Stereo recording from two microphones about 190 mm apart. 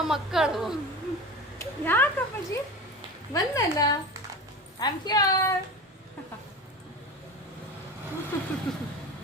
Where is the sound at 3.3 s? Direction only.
20° left (ahead or behind).